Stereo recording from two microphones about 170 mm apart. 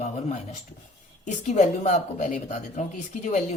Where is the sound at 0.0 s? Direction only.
45° left (ahead or behind).